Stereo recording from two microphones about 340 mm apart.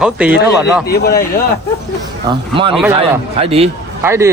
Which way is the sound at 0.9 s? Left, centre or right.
Left.